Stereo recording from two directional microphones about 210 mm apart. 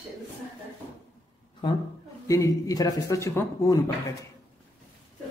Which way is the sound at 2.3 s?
15° left (ahead or behind).